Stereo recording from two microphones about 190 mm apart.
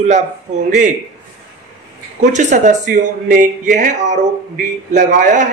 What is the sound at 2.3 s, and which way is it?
A man's voice, 40° right (ahead or behind).